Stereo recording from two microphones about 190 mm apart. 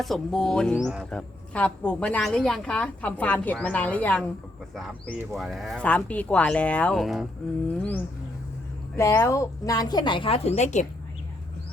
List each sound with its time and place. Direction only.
0.0 s speech: centre (ahead or behind)
7.8 s a sound: 10° left (ahead or behind)
9.0 s a woman's voice: 15° left (ahead or behind); by 10.8 s 35° left (ahead or behind)